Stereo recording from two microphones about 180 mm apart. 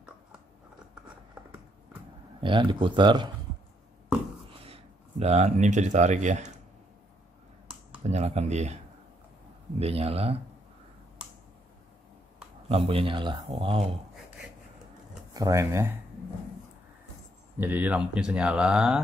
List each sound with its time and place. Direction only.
2.4 s a man's voice: 30° right (ahead or behind)
5.2 s speech: 40° right (ahead or behind)
8.0 s speech: 40° right (ahead or behind)
9.8 s speech: 35° right (ahead or behind)
12.6 s a man's voice: 30° right (ahead or behind)
15.3 s speech: 20° right (ahead or behind)
17.6 s speech: 10° right (ahead or behind)